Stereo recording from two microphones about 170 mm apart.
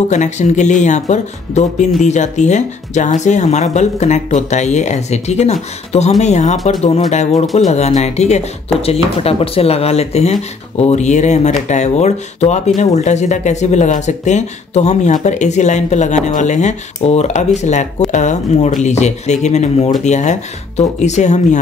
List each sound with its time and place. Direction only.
0.1 s speech: 45° left (ahead or behind)